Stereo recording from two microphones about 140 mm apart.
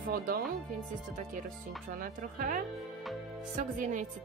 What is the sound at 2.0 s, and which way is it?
Speech, 80° right.